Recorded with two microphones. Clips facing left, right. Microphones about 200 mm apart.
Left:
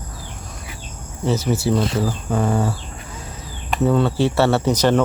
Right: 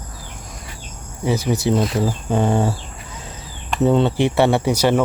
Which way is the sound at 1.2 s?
15° right (ahead or behind).